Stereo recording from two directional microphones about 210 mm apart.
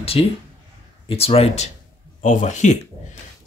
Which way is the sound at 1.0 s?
30° left (ahead or behind).